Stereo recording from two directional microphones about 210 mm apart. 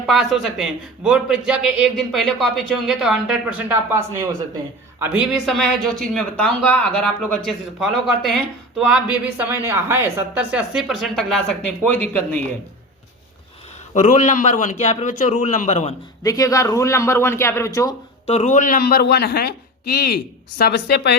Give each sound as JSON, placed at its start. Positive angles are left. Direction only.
{"t": 0.0, "sound": "a man's voice", "side_deg": 0}
{"t": 13.9, "sound": "a man's voice", "side_deg": 35}
{"t": 16.2, "sound": "a man's voice", "side_deg": 15}
{"t": 18.3, "sound": "a man's voice", "side_deg": 35}